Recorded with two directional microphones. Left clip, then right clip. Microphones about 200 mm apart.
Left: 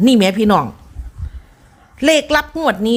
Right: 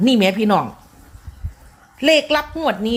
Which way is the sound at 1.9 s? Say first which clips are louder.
Left 2 dB; 35° left (ahead or behind).